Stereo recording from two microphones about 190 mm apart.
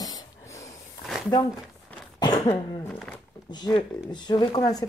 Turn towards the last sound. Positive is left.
turn(degrees=20)  # may be behind; listen again after turning